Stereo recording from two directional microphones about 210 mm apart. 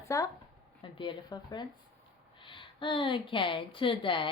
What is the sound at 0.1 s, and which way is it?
A woman's voice, 15° left (ahead or behind).